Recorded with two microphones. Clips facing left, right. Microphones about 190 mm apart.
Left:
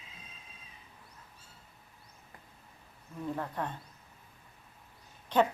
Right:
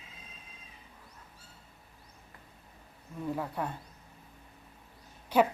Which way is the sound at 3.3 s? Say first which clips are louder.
Right 2 dB; 10° right (ahead or behind).